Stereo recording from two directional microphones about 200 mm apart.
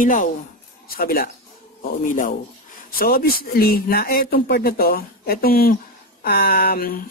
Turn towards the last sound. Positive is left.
turn(degrees=45)  # may be behind; listen again after turning